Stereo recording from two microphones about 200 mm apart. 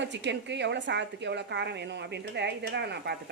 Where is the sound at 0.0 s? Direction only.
60° right (ahead or behind).